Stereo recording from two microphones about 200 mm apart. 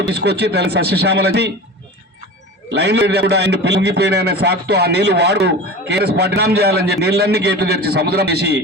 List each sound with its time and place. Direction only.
0.1 s a man's voice: 55° right (ahead or behind)
2.7 s a man's voice: 55° right (ahead or behind)